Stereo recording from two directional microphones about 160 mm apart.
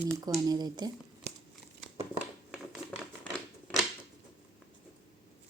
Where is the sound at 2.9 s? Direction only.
10° left (ahead or behind).